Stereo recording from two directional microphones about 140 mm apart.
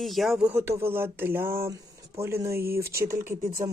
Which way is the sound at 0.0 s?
Centre (ahead or behind).